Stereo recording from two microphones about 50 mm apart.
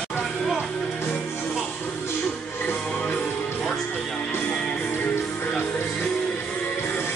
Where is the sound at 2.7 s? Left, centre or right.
Left.